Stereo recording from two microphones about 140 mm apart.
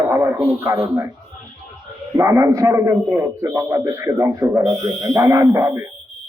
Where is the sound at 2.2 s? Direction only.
20° right (ahead or behind).